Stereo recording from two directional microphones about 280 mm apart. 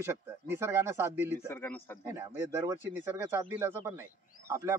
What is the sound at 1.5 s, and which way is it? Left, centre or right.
Speech, centre.